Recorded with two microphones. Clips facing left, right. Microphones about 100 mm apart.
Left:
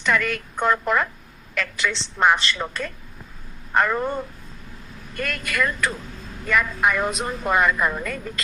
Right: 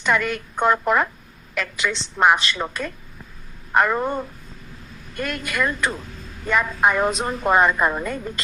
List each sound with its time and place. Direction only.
0.0 s a woman's voice: 20° right (ahead or behind)